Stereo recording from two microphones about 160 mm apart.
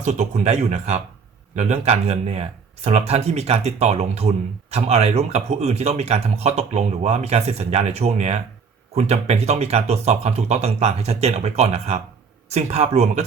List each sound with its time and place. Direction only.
0.0 s speech: 45° right (ahead or behind)